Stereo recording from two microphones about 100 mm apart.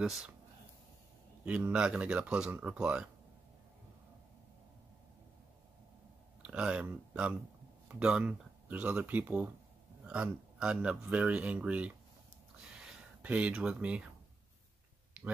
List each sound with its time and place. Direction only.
0.0 s speech: 5° right (ahead or behind)
1.4 s speech: 15° right (ahead or behind)
6.4 s speech: 10° right (ahead or behind)
12.5 s a sound: 5° right (ahead or behind)